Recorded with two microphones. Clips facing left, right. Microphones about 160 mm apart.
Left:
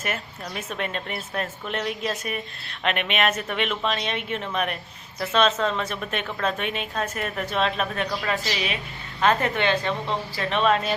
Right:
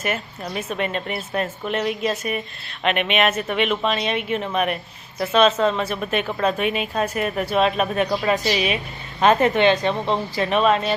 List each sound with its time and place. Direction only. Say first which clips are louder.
0.0 s a woman's voice: right 5 dB; 5° right (ahead or behind)
10.6 s a woman's voice: right 2 dB; centre (ahead or behind)